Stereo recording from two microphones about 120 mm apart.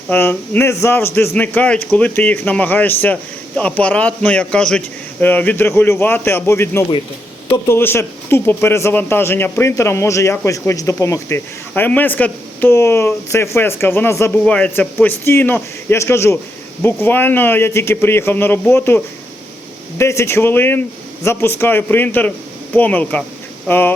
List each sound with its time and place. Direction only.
0.1 s speech: 15° left (ahead or behind)
14.4 s speech: 10° left (ahead or behind)